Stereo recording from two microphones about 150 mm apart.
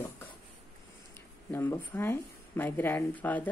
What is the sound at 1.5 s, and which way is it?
A woman's voice, 15° left (ahead or behind).